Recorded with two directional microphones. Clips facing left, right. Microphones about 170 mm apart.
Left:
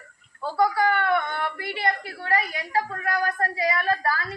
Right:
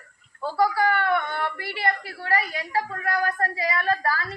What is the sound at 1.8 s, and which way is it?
Speech, 15° left (ahead or behind).